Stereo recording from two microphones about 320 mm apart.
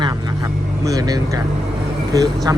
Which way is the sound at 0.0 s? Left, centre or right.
Centre.